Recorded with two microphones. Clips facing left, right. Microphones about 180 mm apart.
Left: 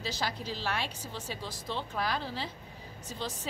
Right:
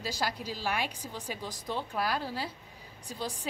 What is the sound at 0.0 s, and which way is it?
A woman's voice, 10° right (ahead or behind).